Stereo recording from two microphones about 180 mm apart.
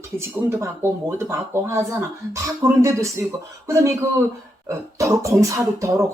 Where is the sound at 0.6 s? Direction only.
15° right (ahead or behind).